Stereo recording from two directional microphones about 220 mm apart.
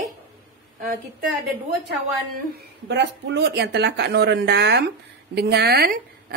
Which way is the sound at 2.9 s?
50° right (ahead or behind).